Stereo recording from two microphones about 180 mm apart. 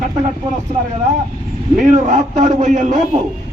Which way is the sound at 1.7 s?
45° right (ahead or behind).